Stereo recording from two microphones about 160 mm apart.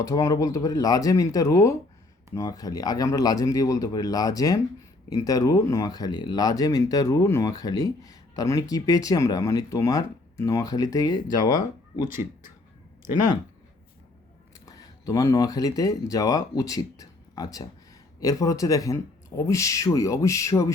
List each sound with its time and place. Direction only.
0.0 s speech: 20° left (ahead or behind)
12.0 s speech: 60° left (ahead or behind)
14.7 s speech: 20° left (ahead or behind)